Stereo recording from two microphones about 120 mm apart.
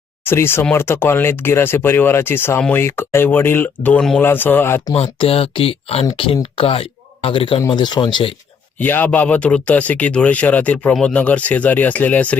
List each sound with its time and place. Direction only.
0.3 s speech: 20° left (ahead or behind)
4.9 s speech: 50° left (ahead or behind)
8.8 s speech: 15° left (ahead or behind)